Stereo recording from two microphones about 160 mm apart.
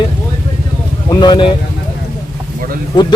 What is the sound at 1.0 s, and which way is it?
Speech, 25° left (ahead or behind).